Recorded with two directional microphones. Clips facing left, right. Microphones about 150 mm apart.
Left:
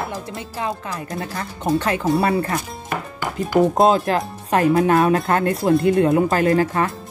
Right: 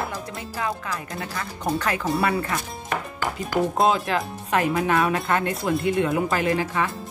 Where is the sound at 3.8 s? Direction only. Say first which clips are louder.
Left 5 dB; 40° left (ahead or behind).